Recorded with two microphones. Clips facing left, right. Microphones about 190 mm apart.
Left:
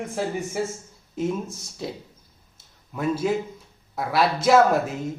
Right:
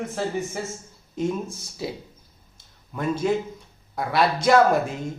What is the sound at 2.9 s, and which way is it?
A man's voice, 5° left (ahead or behind).